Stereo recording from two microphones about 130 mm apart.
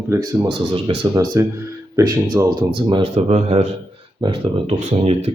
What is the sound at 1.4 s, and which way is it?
Speech, 20° right (ahead or behind).